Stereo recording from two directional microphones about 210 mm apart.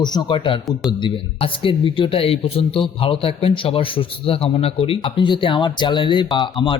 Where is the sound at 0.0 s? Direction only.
20° left (ahead or behind).